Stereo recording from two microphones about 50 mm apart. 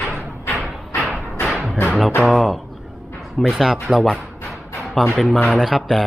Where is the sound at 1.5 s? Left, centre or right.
Centre.